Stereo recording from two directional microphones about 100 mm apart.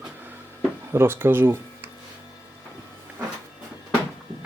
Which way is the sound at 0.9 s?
20° right (ahead or behind).